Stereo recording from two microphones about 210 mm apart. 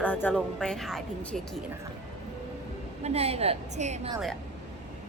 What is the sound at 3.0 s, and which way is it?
A woman's voice, 30° right (ahead or behind).